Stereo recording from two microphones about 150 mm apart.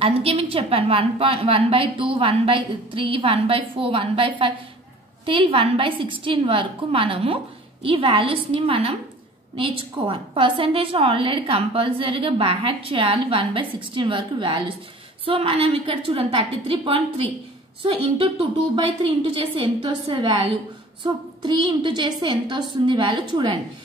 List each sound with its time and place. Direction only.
0.0 s a woman's voice: 40° right (ahead or behind)